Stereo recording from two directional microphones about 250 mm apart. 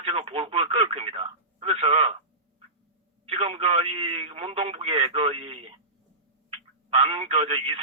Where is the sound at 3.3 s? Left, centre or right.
Right.